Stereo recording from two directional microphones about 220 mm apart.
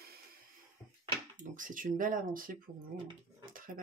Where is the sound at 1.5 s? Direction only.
40° right (ahead or behind).